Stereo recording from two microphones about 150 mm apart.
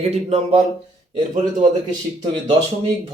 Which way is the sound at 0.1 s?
45° right (ahead or behind).